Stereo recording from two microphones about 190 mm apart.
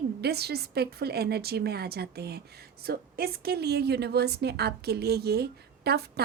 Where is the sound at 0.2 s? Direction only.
55° right (ahead or behind).